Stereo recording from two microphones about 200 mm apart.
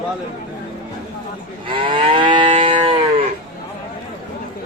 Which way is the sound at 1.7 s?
25° right (ahead or behind).